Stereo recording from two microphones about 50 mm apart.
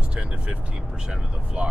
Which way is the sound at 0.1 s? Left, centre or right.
Right.